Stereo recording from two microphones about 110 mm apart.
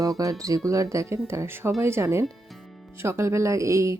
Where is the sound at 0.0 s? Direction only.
30° right (ahead or behind).